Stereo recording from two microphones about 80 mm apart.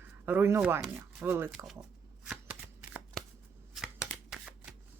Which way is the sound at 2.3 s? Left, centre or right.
Right.